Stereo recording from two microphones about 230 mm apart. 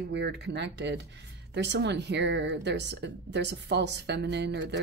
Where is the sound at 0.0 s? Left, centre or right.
Right.